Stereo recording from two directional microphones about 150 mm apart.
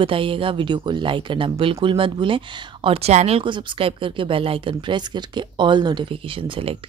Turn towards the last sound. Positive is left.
turn(degrees=-35)  # may be behind; listen again after turning